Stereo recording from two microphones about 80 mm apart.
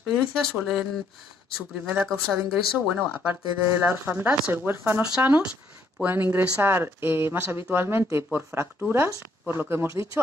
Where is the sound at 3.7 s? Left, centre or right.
Right.